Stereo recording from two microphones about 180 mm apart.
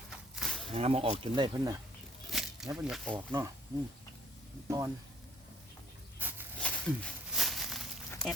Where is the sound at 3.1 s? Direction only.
20° right (ahead or behind).